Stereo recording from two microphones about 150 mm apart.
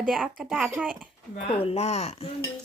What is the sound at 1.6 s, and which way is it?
Speech, 45° left (ahead or behind).